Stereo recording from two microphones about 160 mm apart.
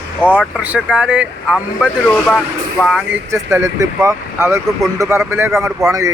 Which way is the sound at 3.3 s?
20° right (ahead or behind).